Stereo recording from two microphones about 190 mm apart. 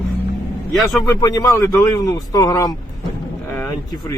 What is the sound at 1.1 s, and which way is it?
Speech, 15° left (ahead or behind).